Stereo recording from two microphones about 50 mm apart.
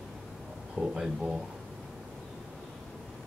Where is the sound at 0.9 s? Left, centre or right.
Centre.